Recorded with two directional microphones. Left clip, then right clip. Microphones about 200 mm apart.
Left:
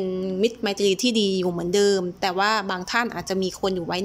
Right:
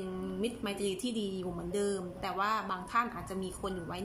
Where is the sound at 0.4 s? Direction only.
40° left (ahead or behind).